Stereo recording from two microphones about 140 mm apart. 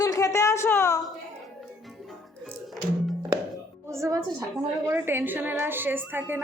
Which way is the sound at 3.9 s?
25° right (ahead or behind).